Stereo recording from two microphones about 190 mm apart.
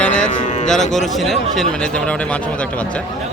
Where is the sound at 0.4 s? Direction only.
40° left (ahead or behind).